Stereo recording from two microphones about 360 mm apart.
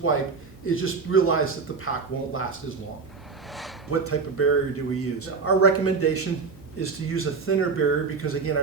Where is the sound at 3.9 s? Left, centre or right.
Left.